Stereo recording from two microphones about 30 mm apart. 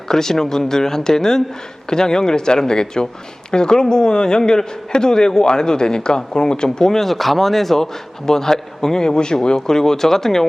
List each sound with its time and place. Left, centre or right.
0.1 s a man's voice: centre
7.0 s a man's voice: centre